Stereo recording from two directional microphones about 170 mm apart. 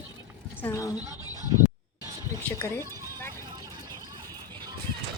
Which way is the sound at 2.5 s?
15° left (ahead or behind).